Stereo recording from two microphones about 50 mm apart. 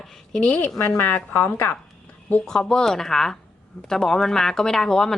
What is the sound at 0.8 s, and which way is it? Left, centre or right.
Speech, left.